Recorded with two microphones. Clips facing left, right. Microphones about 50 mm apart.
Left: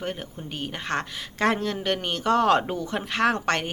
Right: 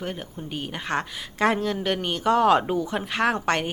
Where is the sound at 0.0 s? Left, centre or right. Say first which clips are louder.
Even; centre.